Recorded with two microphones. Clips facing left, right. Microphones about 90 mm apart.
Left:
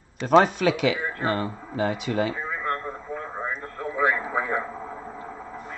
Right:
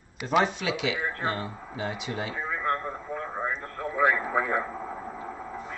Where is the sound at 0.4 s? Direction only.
50° left (ahead or behind).